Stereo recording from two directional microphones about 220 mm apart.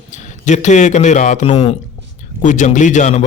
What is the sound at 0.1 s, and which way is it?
A man's voice, 35° left (ahead or behind).